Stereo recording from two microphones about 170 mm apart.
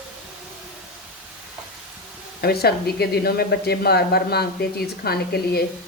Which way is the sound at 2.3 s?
70° left (ahead or behind).